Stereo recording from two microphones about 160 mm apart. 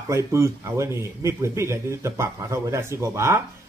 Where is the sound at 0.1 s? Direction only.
15° right (ahead or behind).